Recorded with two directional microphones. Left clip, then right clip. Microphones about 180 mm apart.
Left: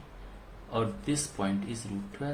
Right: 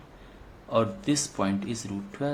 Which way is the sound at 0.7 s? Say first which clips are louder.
Right 6 dB; 40° right (ahead or behind).